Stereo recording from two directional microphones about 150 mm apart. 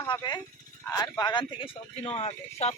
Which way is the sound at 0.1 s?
30° left (ahead or behind).